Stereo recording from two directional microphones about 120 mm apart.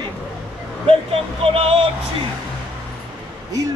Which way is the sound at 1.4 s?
55° right (ahead or behind).